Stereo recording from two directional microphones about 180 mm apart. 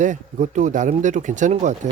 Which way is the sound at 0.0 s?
40° right (ahead or behind).